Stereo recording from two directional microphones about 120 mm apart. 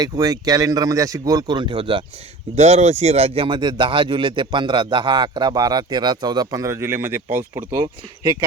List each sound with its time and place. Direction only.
0.0 s speech: 30° right (ahead or behind)
2.6 s speech: 65° right (ahead or behind); by 7.2 s 20° right (ahead or behind)
7.5 s speech: 35° right (ahead or behind)